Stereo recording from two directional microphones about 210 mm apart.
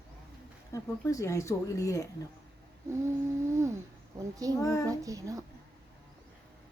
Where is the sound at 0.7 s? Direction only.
15° left (ahead or behind).